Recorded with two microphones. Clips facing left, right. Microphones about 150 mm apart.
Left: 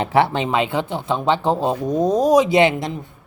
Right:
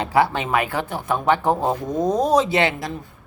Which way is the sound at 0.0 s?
25° left (ahead or behind).